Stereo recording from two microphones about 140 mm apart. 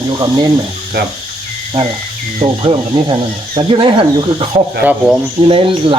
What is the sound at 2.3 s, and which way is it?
Speech, 35° right (ahead or behind).